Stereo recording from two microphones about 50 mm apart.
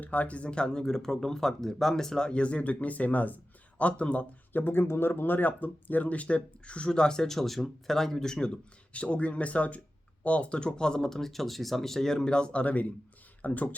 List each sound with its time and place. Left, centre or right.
0.0 s speech: left
4.5 s speech: left; by 8.5 s centre
8.9 s speech: left